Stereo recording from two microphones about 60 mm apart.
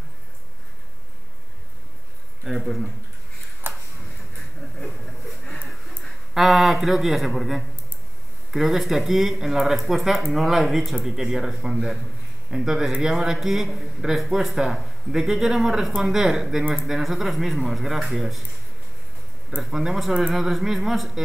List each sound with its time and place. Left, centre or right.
2.4 s speech: centre
3.6 s tick-tock: right
4.7 s a sound: centre
6.0 s a man's voice: centre
19.6 s speech: centre